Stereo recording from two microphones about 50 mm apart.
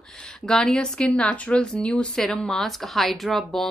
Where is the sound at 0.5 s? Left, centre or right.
Centre.